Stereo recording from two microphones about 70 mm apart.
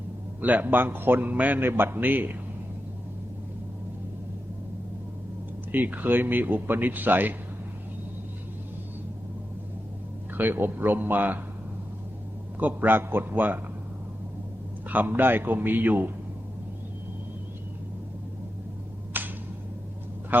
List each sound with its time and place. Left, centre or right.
0.4 s a man's voice: right
5.7 s a man's voice: right
10.3 s a man's voice: right
12.5 s a man's voice: right
14.8 s a man's voice: right
19.1 s a sound: right
20.3 s speech: right